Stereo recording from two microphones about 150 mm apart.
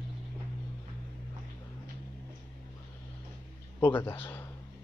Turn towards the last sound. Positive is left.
turn(degrees=15)  # may be behind; listen again after turning